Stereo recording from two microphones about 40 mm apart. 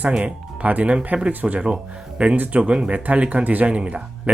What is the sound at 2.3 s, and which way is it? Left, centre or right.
Speech, right.